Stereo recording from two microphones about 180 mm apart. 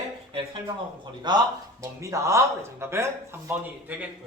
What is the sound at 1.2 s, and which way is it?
A man's voice, 25° right (ahead or behind).